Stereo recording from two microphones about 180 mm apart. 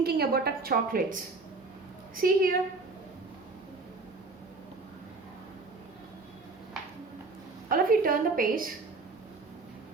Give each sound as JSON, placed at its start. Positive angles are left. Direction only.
{"t": 0.0, "sound": "a woman's voice", "side_deg": -60}
{"t": 2.2, "sound": "a woman's voice", "side_deg": -55}
{"t": 7.7, "sound": "a woman's voice", "side_deg": -50}